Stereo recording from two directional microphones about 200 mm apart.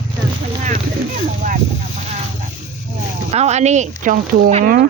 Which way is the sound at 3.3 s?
35° right (ahead or behind).